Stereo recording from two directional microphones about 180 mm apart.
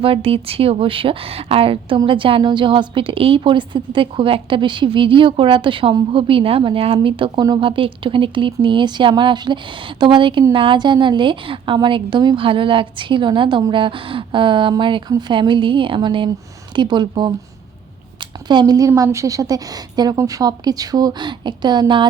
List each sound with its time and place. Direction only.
0.0 s a woman's voice: 30° right (ahead or behind)
18.4 s a woman's voice: 25° right (ahead or behind)